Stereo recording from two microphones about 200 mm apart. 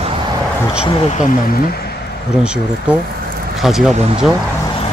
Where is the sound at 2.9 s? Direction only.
5° right (ahead or behind).